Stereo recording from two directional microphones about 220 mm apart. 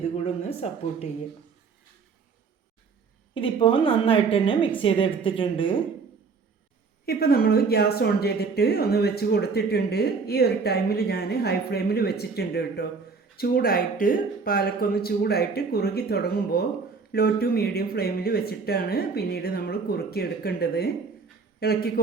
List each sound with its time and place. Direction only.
0.3 s a woman's voice: 30° left (ahead or behind)
3.3 s a woman's voice: 25° left (ahead or behind)
7.0 s speech: 45° left (ahead or behind)